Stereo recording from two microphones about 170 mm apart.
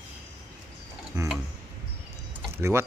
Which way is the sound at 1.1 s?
20° right (ahead or behind).